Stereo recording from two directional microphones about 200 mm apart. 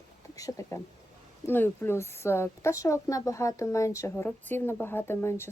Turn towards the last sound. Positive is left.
turn(degrees=10)  # may be behind; listen again after turning